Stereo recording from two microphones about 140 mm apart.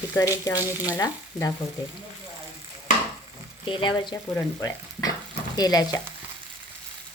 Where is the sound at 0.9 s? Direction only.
25° left (ahead or behind).